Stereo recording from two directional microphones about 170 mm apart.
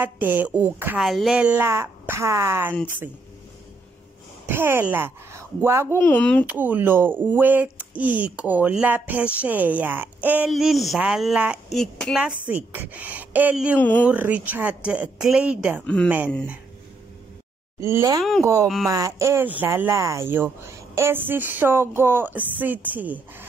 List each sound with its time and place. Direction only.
0.0 s speech: 10° right (ahead or behind)
4.5 s speech: 15° right (ahead or behind)
6.0 s speech: 10° left (ahead or behind)
6.4 s speech: 10° right (ahead or behind)
12.4 s speech: 10° right (ahead or behind)
13.7 s speech: 10° left (ahead or behind)
14.0 s speech: 10° right (ahead or behind)
17.7 s speech: 15° right (ahead or behind)